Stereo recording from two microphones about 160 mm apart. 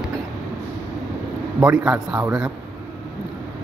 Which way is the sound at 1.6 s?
10° right (ahead or behind).